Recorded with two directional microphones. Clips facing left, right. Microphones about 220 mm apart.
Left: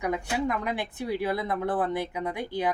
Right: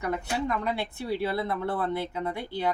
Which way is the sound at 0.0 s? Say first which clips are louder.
Left 2 dB; 15° left (ahead or behind).